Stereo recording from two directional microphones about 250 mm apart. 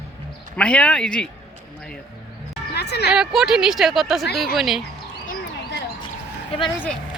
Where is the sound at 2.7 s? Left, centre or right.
Left.